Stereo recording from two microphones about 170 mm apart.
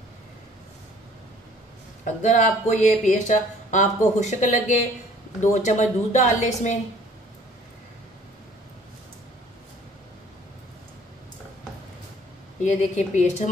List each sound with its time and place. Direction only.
2.0 s speech: 45° left (ahead or behind)
12.6 s speech: 45° left (ahead or behind)